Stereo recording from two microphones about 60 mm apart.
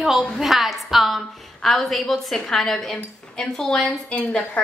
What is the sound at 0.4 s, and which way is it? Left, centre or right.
A woman's voice, centre.